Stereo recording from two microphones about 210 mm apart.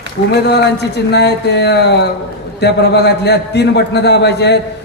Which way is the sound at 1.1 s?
55° left (ahead or behind).